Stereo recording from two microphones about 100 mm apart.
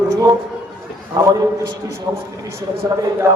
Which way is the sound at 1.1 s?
35° right (ahead or behind).